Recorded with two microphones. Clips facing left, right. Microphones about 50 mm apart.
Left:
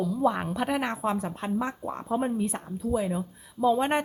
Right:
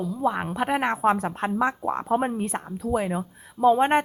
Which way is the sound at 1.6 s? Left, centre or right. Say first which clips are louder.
Right 7 dB; right.